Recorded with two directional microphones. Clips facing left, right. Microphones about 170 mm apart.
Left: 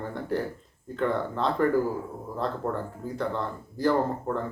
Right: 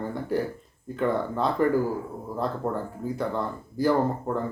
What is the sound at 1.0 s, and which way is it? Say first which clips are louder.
Speech: right 2 dB; 10° right (ahead or behind).